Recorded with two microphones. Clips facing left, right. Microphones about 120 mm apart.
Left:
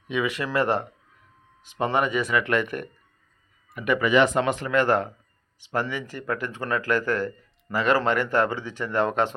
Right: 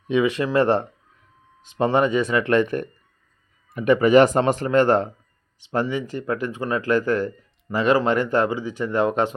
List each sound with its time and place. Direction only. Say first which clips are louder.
0.1 s speech: right 6 dB; 25° right (ahead or behind)